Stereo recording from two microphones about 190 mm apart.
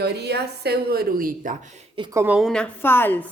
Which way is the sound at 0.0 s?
60° right (ahead or behind).